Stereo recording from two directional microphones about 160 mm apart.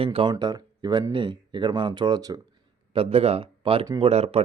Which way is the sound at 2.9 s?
35° right (ahead or behind).